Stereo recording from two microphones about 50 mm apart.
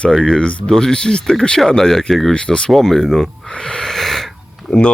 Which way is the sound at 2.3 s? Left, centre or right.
Centre.